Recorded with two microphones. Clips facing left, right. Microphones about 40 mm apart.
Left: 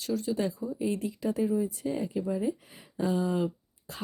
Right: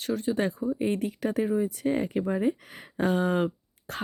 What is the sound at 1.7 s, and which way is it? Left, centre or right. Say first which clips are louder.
Speech: right 5 dB; right.